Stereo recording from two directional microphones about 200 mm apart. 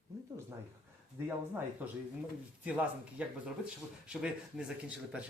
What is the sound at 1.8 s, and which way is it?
A man's voice, 10° right (ahead or behind).